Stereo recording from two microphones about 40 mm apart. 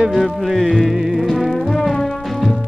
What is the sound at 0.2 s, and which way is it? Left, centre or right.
Music, centre.